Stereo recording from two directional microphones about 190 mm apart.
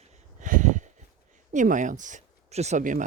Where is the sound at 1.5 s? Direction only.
45° right (ahead or behind).